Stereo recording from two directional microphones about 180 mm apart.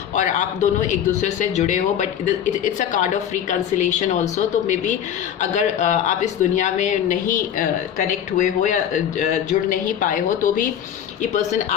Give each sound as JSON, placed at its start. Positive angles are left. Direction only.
{"t": 0.2, "sound": "a man's voice", "side_deg": 40}
{"t": 5.4, "sound": "speech", "side_deg": 40}